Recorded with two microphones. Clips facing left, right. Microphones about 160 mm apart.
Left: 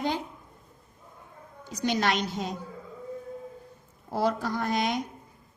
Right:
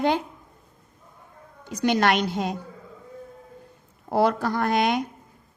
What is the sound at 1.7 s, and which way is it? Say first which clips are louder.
Speech: right 5 dB; 60° right (ahead or behind).